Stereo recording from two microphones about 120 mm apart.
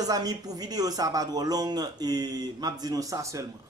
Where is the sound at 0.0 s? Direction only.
30° right (ahead or behind).